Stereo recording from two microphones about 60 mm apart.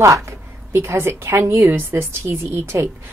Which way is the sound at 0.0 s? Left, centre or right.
Right.